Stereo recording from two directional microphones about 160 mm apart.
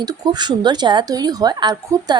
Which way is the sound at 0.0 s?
25° right (ahead or behind).